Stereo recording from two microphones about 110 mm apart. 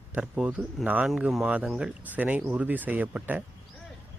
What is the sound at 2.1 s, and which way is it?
Speech, 15° right (ahead or behind).